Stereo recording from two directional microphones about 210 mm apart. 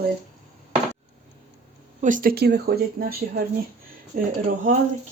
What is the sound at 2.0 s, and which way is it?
Speech, 40° right (ahead or behind).